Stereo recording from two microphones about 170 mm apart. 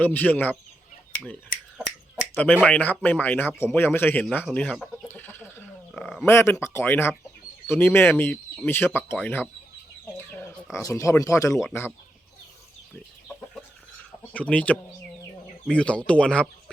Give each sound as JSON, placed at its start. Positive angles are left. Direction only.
{"t": 0.0, "sound": "speech", "side_deg": 10}
{"t": 2.3, "sound": "speech", "side_deg": 10}
{"t": 4.5, "sound": "chicken", "side_deg": 5}
{"t": 6.3, "sound": "speech", "side_deg": 15}
{"t": 10.2, "sound": "chicken", "side_deg": 5}
{"t": 10.8, "sound": "speech", "side_deg": 20}
{"t": 14.3, "sound": "speech", "side_deg": 10}